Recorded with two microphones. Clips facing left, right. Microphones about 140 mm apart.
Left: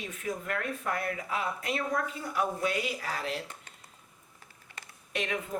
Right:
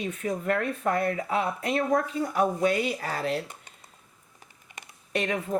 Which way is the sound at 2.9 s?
45° right (ahead or behind).